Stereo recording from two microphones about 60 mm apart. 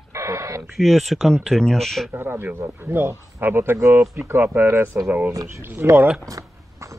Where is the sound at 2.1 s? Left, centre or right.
Right.